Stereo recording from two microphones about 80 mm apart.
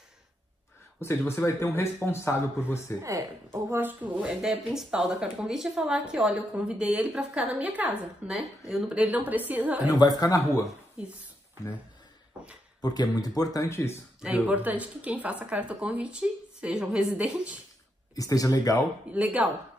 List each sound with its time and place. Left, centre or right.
1.0 s speech: left
3.0 s speech: right
3.7 s speech: right
8.3 s speech: centre
9.8 s speech: left
12.8 s speech: left
13.7 s speech: left
14.2 s speech: centre
18.1 s speech: left
19.1 s speech: centre